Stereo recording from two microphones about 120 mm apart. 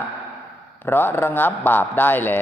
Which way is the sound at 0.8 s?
20° left (ahead or behind).